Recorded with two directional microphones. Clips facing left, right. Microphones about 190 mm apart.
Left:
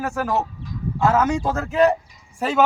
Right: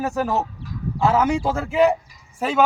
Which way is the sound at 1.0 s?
15° right (ahead or behind).